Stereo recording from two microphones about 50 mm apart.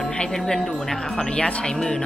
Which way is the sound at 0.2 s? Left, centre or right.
Centre.